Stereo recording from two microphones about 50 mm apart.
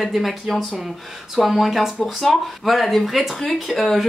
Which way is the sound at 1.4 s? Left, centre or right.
Centre.